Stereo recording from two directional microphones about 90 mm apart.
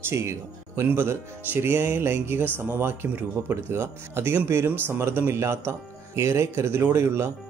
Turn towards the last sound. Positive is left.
turn(degrees=-30)  # may be behind; listen again after turning